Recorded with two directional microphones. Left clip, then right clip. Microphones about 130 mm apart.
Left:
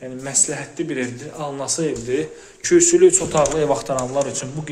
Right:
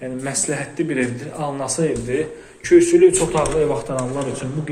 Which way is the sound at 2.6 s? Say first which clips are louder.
Right 1 dB; 50° left (ahead or behind).